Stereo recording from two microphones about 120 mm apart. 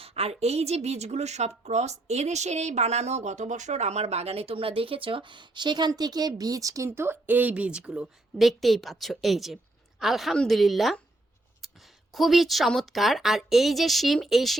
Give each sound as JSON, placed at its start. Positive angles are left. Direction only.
{"t": 0.0, "sound": "a woman's voice", "side_deg": -55}